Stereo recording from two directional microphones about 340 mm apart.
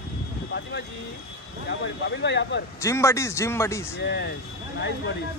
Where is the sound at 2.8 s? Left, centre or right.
Centre.